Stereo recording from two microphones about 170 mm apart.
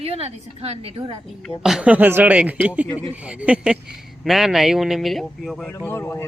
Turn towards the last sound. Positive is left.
turn(degrees=15)  # may be behind; listen again after turning